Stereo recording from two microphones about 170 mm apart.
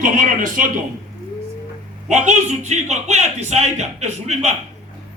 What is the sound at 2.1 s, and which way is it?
A man's voice, 45° right (ahead or behind).